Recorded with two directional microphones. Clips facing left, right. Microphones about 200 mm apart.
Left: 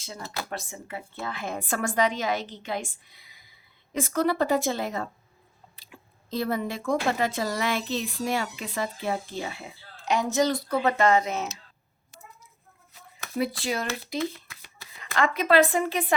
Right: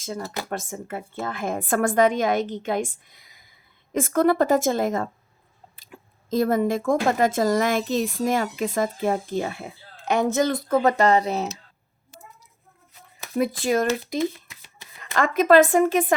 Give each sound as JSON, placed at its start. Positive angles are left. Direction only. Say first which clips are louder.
{"t": 0.0, "sound": "speech", "louder": "right 6 dB", "side_deg": -50}
{"t": 13.4, "sound": "speech", "louder": "right 7 dB", "side_deg": -50}
{"t": 14.2, "sound": "shuffling cards", "louder": "right 5 dB", "side_deg": -20}
{"t": 15.0, "sound": "speech", "louder": "right 5 dB", "side_deg": -45}